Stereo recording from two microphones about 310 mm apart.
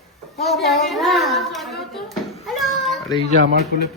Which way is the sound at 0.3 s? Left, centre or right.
Centre.